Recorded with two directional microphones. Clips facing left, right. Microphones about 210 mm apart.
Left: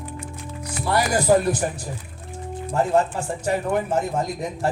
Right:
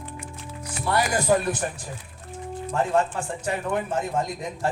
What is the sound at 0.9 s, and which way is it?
Speech, 40° left (ahead or behind).